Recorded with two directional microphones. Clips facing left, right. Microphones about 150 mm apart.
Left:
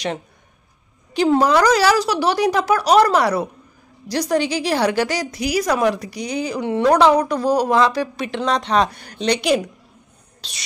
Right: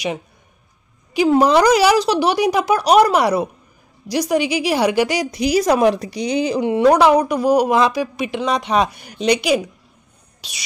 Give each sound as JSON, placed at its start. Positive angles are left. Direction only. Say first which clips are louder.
{"t": 1.1, "sound": "a woman's voice", "louder": "right 2 dB", "side_deg": -10}
{"t": 6.7, "sound": "speech", "louder": "right 1 dB", "side_deg": -10}